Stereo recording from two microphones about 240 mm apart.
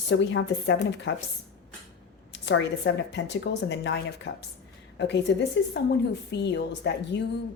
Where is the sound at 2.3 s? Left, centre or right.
Left.